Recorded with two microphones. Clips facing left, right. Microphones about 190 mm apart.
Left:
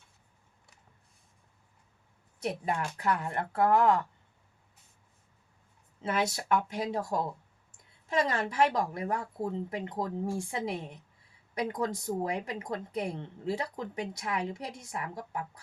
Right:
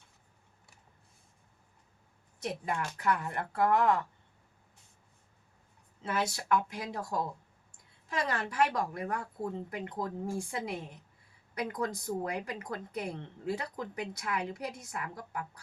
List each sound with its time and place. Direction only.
2.6 s speech: 25° left (ahead or behind)
6.0 s speech: 25° left (ahead or behind)